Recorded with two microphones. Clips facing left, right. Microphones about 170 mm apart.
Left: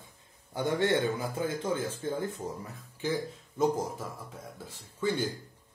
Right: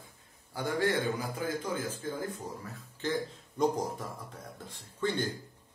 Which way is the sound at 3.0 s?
10° left (ahead or behind).